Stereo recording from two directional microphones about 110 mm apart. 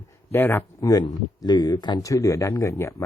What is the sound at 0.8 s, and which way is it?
Speech, 35° left (ahead or behind).